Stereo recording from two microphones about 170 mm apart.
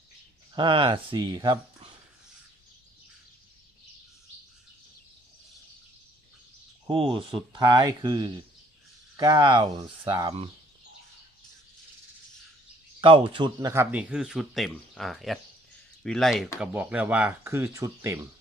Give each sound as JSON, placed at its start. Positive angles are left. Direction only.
{"t": 0.5, "sound": "speech", "side_deg": -30}
{"t": 6.8, "sound": "speech", "side_deg": -30}
{"t": 13.0, "sound": "speech", "side_deg": -30}
{"t": 13.9, "sound": "speech", "side_deg": -5}